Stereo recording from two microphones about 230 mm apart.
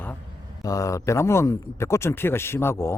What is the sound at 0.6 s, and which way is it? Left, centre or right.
Speech, centre.